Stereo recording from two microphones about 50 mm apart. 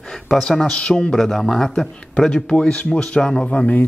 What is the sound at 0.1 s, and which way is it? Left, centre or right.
Speech, centre.